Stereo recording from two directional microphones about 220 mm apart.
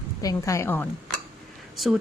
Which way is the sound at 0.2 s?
15° left (ahead or behind).